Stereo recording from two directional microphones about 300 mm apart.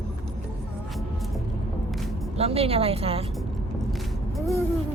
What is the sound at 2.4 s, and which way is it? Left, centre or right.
Speech, centre.